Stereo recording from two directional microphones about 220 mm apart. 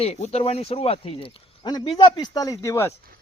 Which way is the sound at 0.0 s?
30° left (ahead or behind).